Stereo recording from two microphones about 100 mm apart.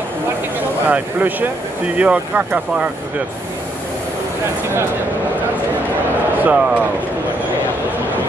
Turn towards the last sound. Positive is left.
turn(degrees=-15)  # may be behind; listen again after turning